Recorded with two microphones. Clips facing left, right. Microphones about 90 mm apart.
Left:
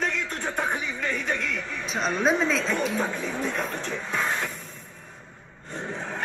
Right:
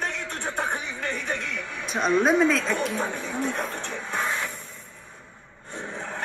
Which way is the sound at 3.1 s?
55° right (ahead or behind).